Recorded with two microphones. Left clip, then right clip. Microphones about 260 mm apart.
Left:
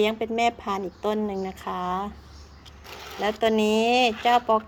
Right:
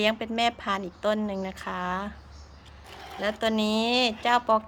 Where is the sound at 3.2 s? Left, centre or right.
Right.